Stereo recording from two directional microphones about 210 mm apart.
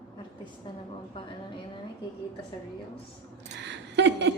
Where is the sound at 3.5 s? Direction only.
55° right (ahead or behind).